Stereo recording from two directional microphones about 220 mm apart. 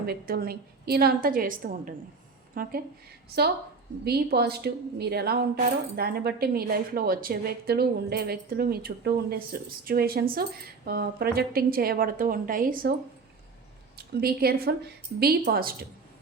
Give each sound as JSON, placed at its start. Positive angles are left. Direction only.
{"t": 0.0, "sound": "a woman's voice", "side_deg": -45}
{"t": 13.9, "sound": "a woman's voice", "side_deg": -45}